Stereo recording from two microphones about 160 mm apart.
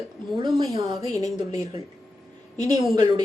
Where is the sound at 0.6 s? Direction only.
25° right (ahead or behind).